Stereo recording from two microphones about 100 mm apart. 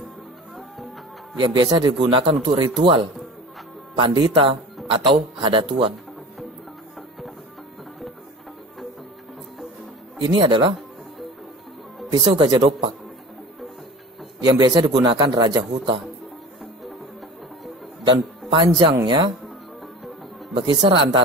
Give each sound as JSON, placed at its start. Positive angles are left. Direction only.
{"t": 1.4, "sound": "speech", "side_deg": -50}
{"t": 7.0, "sound": "music", "side_deg": 0}
{"t": 10.2, "sound": "speech", "side_deg": -55}
{"t": 12.1, "sound": "speech", "side_deg": -60}
{"t": 14.4, "sound": "speech", "side_deg": -45}
{"t": 18.0, "sound": "music", "side_deg": -55}
{"t": 19.0, "sound": "speech", "side_deg": -50}
{"t": 20.5, "sound": "speech", "side_deg": -55}